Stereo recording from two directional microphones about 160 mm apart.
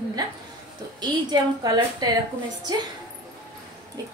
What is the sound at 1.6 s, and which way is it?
Speech, 25° right (ahead or behind).